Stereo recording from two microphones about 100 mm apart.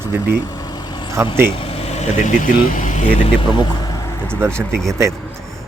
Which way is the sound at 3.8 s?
35° left (ahead or behind).